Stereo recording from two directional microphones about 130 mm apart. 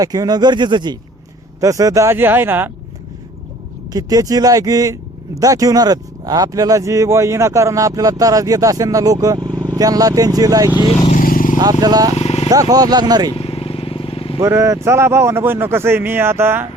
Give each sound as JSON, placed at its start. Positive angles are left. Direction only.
{"t": 0.0, "sound": "speech", "side_deg": -30}
{"t": 3.9, "sound": "speech", "side_deg": -30}
{"t": 11.0, "sound": "vehicle", "side_deg": 80}
{"t": 11.6, "sound": "speech", "side_deg": -30}
{"t": 12.1, "sound": "vehicle", "side_deg": 55}
{"t": 12.5, "sound": "speech", "side_deg": -30}
{"t": 13.3, "sound": "vehicle", "side_deg": 45}
{"t": 14.4, "sound": "speech", "side_deg": -25}